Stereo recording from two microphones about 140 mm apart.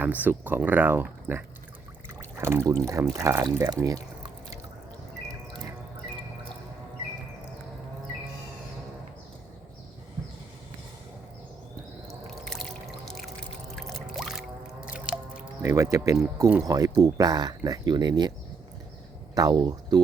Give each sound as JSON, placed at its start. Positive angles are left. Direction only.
{"t": 0.0, "sound": "speech", "side_deg": -10}
{"t": 12.5, "sound": "music", "side_deg": 5}
{"t": 14.9, "sound": "drip", "side_deg": -5}
{"t": 15.6, "sound": "speech", "side_deg": -20}